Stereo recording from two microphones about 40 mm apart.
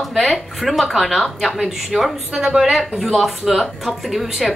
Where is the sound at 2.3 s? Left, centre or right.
Centre.